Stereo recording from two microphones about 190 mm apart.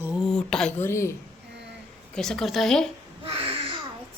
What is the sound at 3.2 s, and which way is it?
Babbling, 30° right (ahead or behind).